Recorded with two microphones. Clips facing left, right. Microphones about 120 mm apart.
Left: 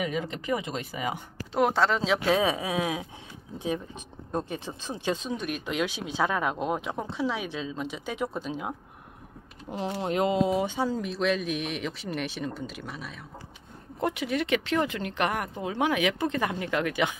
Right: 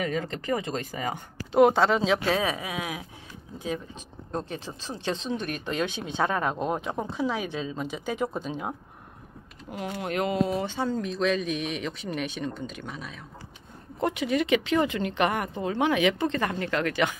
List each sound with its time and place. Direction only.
0.0 s speech: 10° left (ahead or behind)
1.5 s speech: centre (ahead or behind)
2.2 s speech: 20° left (ahead or behind); by 8.7 s centre (ahead or behind)
9.7 s speech: 30° left (ahead or behind)